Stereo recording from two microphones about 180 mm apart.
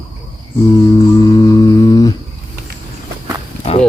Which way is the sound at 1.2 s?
20° left (ahead or behind).